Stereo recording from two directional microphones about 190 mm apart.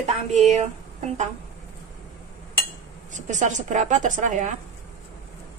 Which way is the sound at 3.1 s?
40° right (ahead or behind).